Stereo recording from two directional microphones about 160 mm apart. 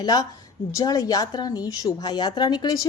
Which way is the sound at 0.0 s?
25° left (ahead or behind).